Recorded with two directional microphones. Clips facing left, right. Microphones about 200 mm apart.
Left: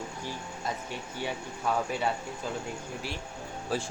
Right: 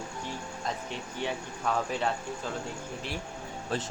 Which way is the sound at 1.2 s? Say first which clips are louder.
Right 1 dB; 5° left (ahead or behind).